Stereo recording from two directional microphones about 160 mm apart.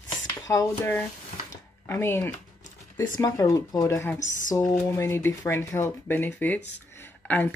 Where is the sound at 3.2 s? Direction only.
20° left (ahead or behind).